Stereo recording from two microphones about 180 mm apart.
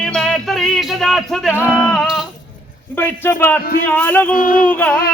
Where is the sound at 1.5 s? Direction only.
10° right (ahead or behind).